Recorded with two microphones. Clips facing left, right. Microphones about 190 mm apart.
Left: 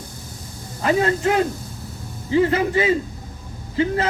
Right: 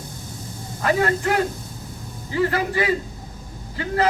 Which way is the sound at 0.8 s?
20° left (ahead or behind).